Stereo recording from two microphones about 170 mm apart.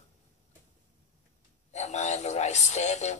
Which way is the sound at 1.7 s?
40° left (ahead or behind).